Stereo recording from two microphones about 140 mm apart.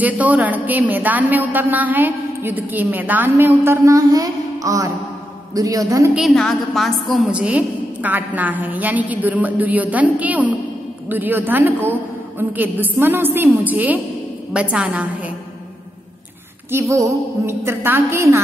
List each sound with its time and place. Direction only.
0.0 s a man's voice: 10° right (ahead or behind)
6.1 s a man's voice: centre (ahead or behind)
16.7 s a man's voice: 20° right (ahead or behind)